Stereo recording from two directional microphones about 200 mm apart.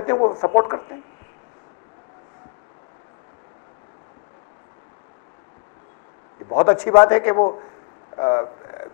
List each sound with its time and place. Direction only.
0.0 s speech: 30° left (ahead or behind)
6.5 s speech: 25° left (ahead or behind)
8.2 s a sound: 25° left (ahead or behind)